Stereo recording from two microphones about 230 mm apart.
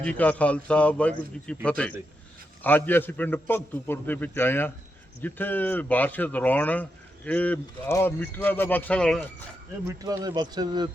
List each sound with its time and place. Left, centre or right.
0.0 s a man's voice: centre
10.0 s speech: centre